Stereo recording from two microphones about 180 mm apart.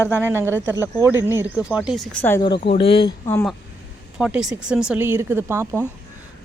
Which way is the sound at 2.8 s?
30° left (ahead or behind).